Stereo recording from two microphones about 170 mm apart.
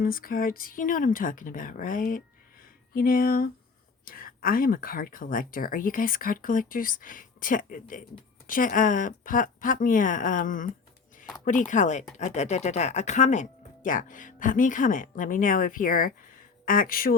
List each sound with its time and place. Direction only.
0.0 s speech: 55° left (ahead or behind)